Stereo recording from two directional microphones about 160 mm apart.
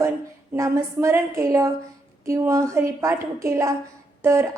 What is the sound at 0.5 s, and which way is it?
A woman's voice, 20° right (ahead or behind).